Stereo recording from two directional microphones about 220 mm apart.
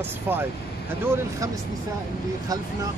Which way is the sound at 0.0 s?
10° right (ahead or behind).